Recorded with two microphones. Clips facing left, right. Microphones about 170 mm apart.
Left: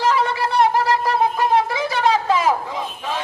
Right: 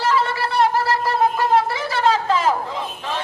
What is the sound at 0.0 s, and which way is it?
Shofar, 15° left (ahead or behind).